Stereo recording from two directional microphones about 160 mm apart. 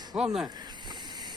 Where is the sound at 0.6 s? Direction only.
25° right (ahead or behind).